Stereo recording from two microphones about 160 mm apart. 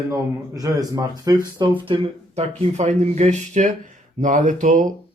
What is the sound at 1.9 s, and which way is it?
Speech, 45° right (ahead or behind).